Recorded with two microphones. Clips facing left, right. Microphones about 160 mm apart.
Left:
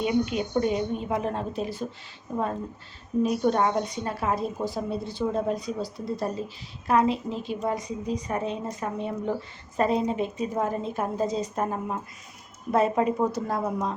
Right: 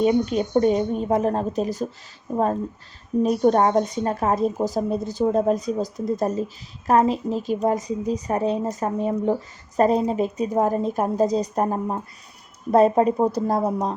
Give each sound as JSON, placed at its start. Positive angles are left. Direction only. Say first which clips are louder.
{"t": 0.0, "sound": "a woman's voice", "louder": "right 6 dB", "side_deg": -40}
{"t": 3.2, "sound": "a woman's voice", "louder": "right 6 dB", "side_deg": -40}